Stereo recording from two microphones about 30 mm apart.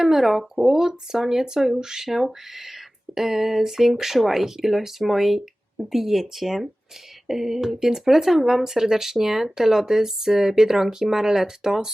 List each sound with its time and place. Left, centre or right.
0.0 s speech: centre
2.0 s speech: centre